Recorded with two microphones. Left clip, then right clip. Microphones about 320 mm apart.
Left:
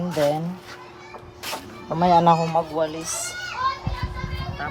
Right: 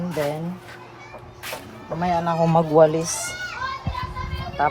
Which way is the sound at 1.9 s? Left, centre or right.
Centre.